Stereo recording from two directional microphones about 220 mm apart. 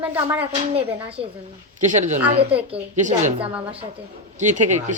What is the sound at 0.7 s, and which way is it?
A man's voice, 25° right (ahead or behind).